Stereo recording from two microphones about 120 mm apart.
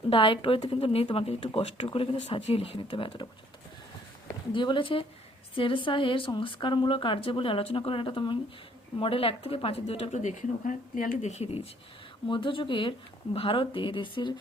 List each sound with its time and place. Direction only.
0.1 s speech: 45° left (ahead or behind)
4.5 s a woman's voice: 40° left (ahead or behind); by 10.8 s 80° left
11.2 s a woman's voice: 65° left (ahead or behind)
12.3 s speech: 45° left (ahead or behind)